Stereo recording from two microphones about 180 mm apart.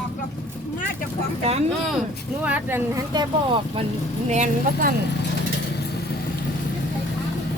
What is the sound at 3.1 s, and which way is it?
Speech, 30° right (ahead or behind).